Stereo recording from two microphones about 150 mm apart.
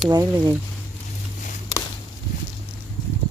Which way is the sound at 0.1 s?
25° right (ahead or behind).